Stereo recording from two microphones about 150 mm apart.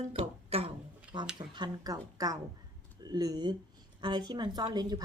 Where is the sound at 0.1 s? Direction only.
40° right (ahead or behind).